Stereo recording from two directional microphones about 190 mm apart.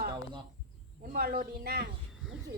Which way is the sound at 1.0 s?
50° right (ahead or behind).